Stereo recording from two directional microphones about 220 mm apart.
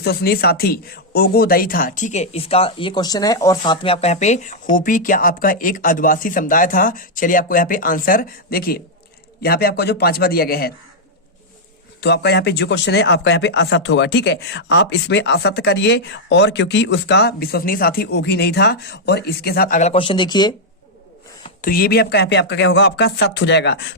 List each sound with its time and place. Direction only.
0.0 s speech: 45° left (ahead or behind)
11.9 s speech: 50° left (ahead or behind); by 20.6 s 20° left (ahead or behind)
21.6 s speech: 40° left (ahead or behind)